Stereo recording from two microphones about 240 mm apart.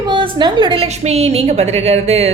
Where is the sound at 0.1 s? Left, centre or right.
Centre.